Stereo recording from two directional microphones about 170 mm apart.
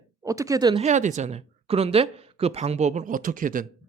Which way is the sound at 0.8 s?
45° right (ahead or behind).